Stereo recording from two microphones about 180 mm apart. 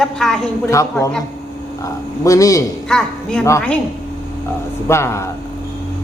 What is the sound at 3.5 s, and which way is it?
Speech, 15° left (ahead or behind).